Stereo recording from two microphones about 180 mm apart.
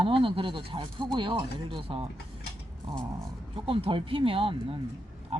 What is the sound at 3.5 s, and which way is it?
Speech, 30° right (ahead or behind).